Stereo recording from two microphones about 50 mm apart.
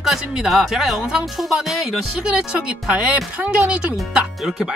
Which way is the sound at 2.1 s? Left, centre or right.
Right.